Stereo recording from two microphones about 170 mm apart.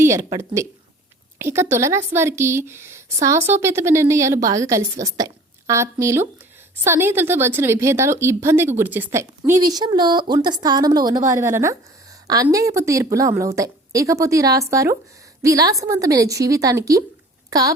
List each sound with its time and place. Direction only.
0.0 s a woman's voice: 15° right (ahead or behind)
9.4 s a woman's voice: 25° right (ahead or behind)